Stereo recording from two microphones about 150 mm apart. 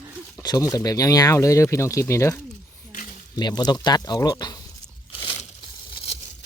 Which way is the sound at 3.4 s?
30° left (ahead or behind).